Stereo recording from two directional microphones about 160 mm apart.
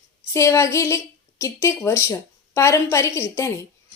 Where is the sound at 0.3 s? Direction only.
20° left (ahead or behind).